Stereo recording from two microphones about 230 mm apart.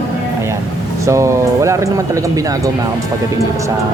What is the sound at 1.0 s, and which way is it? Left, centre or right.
Speech, centre.